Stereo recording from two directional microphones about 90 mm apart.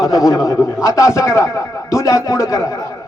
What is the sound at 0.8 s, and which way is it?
Speech, 35° left (ahead or behind).